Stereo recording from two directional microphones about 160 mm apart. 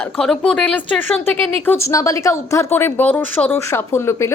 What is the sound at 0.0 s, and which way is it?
A woman's voice, 5° left (ahead or behind).